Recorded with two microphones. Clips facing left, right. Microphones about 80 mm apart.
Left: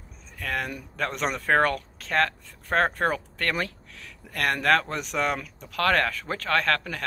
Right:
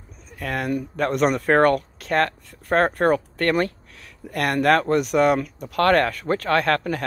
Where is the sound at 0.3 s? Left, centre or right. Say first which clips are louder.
Right 6 dB; centre.